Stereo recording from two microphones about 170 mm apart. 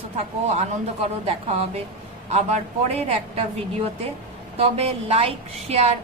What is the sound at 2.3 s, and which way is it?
A woman's voice, 40° right (ahead or behind).